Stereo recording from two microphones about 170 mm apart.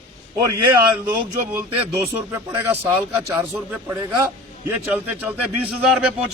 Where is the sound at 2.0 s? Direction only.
10° right (ahead or behind).